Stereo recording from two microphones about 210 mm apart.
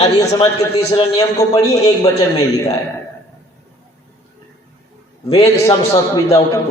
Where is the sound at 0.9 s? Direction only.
20° left (ahead or behind).